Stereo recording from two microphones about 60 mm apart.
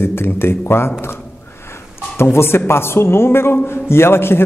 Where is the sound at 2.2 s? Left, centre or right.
Left.